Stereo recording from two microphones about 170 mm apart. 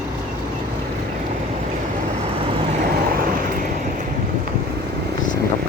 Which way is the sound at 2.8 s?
60° right (ahead or behind).